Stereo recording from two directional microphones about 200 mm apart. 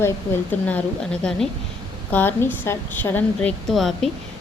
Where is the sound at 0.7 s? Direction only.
5° left (ahead or behind).